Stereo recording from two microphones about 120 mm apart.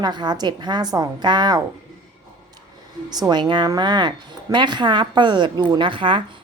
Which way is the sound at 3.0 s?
35° right (ahead or behind).